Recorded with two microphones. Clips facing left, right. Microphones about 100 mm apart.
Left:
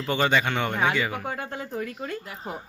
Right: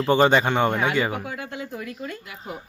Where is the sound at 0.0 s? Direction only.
30° right (ahead or behind).